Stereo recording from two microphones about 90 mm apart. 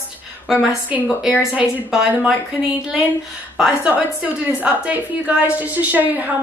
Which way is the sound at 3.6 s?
15° right (ahead or behind).